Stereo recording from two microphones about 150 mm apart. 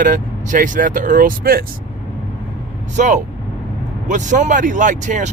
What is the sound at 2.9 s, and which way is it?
Speech, 55° right (ahead or behind).